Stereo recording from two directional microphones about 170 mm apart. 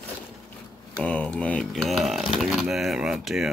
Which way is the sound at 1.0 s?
5° left (ahead or behind).